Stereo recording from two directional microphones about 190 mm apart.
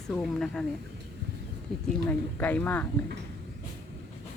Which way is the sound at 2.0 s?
10° left (ahead or behind).